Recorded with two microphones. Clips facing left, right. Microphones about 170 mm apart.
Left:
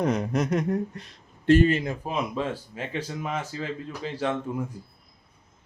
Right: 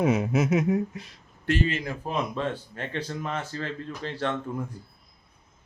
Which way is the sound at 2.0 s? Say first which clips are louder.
Right 2 dB; 5° left (ahead or behind).